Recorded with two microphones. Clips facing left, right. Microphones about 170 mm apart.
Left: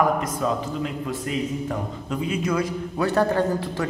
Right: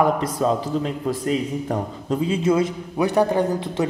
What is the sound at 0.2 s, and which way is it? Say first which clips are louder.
Speech: right 4 dB; 35° right (ahead or behind).